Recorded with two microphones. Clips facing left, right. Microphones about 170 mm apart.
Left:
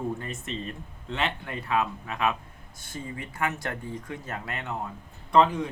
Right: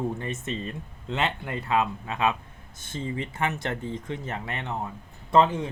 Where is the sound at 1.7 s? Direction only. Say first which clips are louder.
Right 2 dB; 25° right (ahead or behind).